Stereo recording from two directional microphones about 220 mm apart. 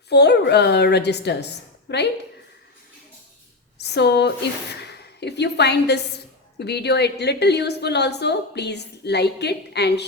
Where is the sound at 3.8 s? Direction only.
50° left (ahead or behind).